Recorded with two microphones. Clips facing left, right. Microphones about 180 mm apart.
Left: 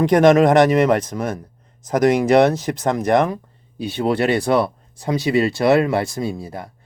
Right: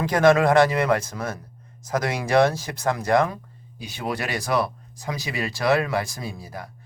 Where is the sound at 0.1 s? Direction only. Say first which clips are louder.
Left 4 dB; 20° left (ahead or behind).